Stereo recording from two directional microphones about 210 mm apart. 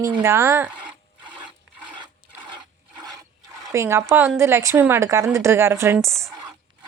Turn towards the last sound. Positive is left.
turn(degrees=-15)  # may be behind; listen again after turning